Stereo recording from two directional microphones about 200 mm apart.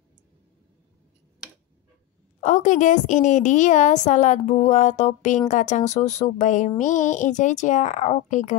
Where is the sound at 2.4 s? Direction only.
40° left (ahead or behind).